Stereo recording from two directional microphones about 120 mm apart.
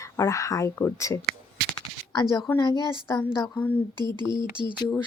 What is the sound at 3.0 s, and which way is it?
Speech, 20° left (ahead or behind).